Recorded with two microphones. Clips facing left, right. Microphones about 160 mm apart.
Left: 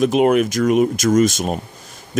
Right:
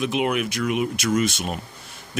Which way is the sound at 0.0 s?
45° left (ahead or behind).